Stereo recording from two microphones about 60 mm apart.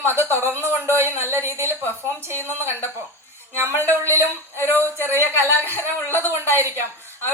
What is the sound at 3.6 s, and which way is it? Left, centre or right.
Speech, right.